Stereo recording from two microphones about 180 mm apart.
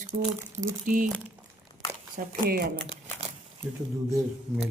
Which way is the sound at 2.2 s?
55° right (ahead or behind).